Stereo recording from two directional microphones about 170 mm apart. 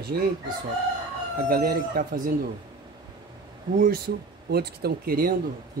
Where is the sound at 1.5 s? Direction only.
60° right (ahead or behind).